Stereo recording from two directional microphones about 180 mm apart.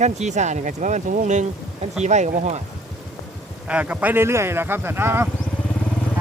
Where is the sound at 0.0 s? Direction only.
40° right (ahead or behind).